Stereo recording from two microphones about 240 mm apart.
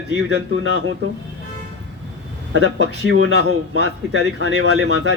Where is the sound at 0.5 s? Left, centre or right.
Left.